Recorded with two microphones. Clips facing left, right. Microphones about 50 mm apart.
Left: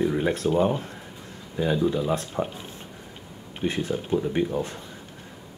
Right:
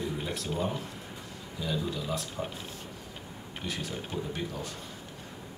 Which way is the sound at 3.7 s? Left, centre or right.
Left.